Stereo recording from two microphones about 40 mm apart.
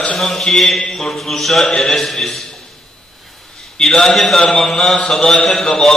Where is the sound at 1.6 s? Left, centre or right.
Centre.